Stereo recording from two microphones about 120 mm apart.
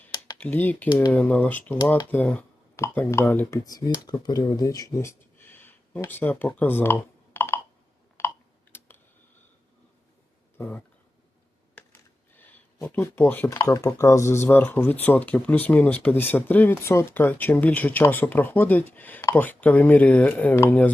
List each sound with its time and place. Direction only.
0.3 s speech: 15° left (ahead or behind)
8.2 s clicking: 20° left (ahead or behind)
8.7 s typing: 15° left (ahead or behind)
10.6 s a sound: 15° left (ahead or behind)
12.4 s speech: 15° left (ahead or behind)